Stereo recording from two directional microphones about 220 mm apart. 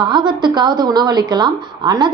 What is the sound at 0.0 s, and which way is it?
A woman's voice, 20° right (ahead or behind).